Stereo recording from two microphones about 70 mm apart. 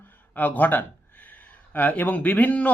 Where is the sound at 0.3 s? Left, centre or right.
Left.